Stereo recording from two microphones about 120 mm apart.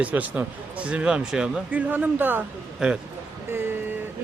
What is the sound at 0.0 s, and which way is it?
Speech, 15° right (ahead or behind).